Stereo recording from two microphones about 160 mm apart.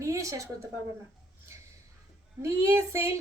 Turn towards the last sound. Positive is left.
turn(degrees=-15)  # may be behind; listen again after turning